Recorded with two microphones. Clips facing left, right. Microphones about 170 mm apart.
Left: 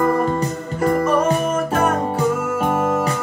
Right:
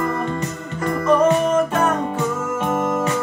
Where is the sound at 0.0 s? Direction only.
40° left (ahead or behind).